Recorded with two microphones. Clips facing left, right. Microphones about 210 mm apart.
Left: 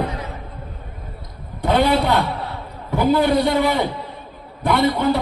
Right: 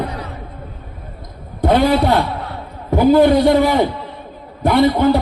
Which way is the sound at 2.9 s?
45° right (ahead or behind).